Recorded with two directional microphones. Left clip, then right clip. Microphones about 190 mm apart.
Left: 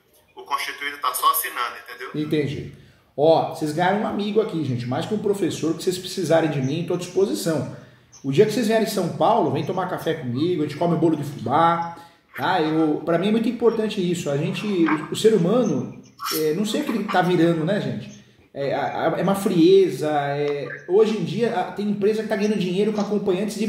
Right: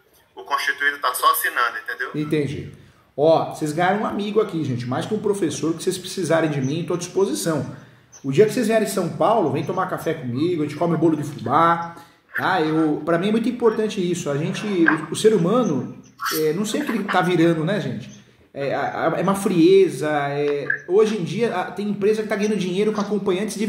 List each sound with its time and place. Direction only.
0.5 s a man's voice: 90° left
2.1 s speech: 15° right (ahead or behind)
16.6 s speech: 15° right (ahead or behind)